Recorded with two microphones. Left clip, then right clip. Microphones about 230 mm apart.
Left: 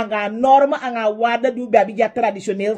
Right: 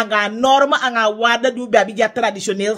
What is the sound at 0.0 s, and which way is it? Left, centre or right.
Speech, right.